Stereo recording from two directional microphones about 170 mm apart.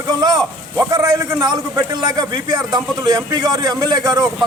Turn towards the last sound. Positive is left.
turn(degrees=-25)  # may be behind; listen again after turning